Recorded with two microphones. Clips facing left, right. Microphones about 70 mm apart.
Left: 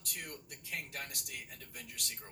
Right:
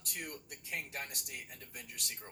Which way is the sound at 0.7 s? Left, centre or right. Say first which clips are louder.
Right 1 dB; right.